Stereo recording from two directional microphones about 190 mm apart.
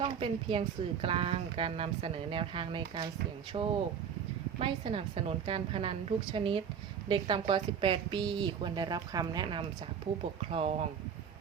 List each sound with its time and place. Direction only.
0.0 s a woman's voice: 30° right (ahead or behind)